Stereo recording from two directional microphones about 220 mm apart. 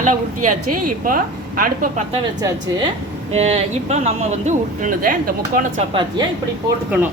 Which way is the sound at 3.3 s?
30° right (ahead or behind).